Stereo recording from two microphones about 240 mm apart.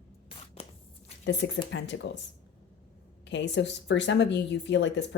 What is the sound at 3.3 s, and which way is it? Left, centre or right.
A woman's voice, left.